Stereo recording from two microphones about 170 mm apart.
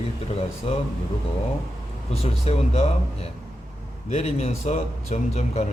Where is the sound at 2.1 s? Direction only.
35° left (ahead or behind).